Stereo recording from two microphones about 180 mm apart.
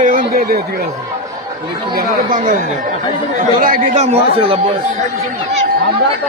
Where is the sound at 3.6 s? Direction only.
50° right (ahead or behind).